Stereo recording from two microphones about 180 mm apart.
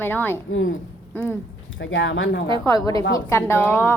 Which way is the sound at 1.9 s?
90° left.